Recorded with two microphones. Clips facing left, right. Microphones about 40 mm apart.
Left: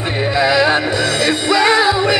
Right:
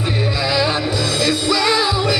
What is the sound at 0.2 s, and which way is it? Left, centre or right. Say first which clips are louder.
Music: left 7 dB; left.